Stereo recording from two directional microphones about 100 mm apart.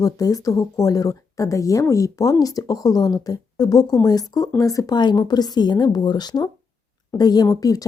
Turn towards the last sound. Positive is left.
turn(degrees=35)  # may be behind; listen again after turning